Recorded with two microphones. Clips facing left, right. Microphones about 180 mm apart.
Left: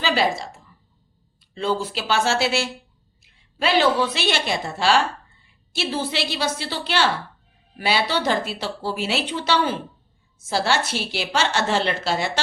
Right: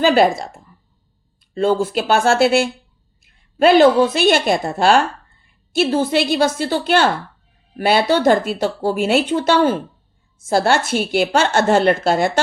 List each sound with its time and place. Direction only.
0.0 s speech: 50° right (ahead or behind)